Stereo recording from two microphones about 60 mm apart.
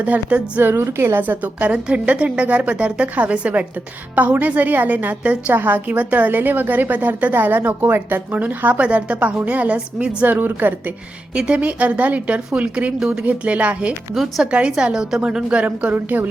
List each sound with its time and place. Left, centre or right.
0.0 s a woman's voice: right
0.6 s a woman's voice: right
1.5 s a woman's voice: right
10.2 s a woman's voice: right
11.3 s a woman's voice: centre